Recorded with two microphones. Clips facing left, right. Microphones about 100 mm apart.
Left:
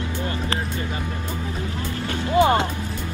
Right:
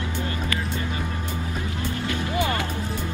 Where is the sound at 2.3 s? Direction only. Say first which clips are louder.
Left 10 dB; 30° left (ahead or behind).